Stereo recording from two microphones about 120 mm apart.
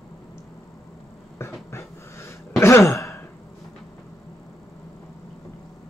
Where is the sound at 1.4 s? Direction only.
20° left (ahead or behind).